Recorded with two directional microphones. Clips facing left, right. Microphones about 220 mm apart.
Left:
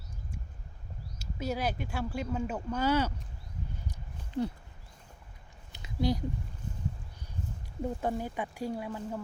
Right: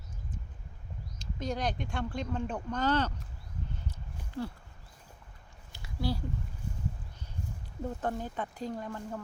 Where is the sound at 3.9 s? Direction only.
20° left (ahead or behind).